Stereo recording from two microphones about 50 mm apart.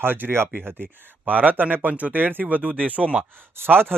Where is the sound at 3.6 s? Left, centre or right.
Right.